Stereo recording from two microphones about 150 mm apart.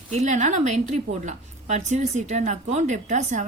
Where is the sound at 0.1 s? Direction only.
50° right (ahead or behind).